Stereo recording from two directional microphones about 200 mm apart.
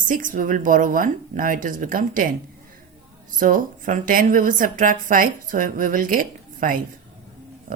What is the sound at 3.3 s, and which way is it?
A woman's voice, 45° right (ahead or behind).